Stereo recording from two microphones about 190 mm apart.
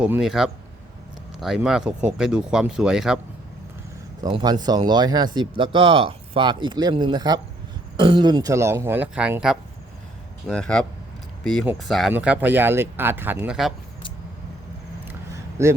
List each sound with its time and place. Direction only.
0.0 s speech: 5° right (ahead or behind)
4.2 s speech: 25° right (ahead or behind); by 13.7 s 5° right (ahead or behind)
15.0 s a sound: 15° right (ahead or behind)